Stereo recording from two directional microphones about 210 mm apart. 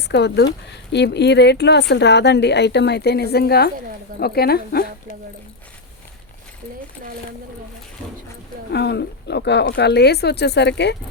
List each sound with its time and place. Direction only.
0.0 s speech: 55° left (ahead or behind)
8.7 s speech: 55° left (ahead or behind)